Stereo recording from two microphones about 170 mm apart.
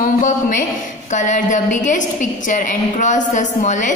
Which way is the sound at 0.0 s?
50° left (ahead or behind).